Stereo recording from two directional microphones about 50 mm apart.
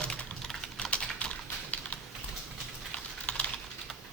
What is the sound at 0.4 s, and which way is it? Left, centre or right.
Typing, centre.